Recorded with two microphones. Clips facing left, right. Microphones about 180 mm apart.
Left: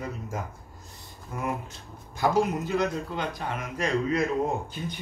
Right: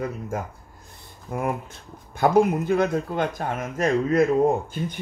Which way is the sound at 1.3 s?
55° right (ahead or behind).